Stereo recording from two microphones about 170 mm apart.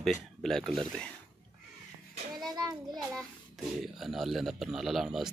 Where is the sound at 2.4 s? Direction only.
25° right (ahead or behind).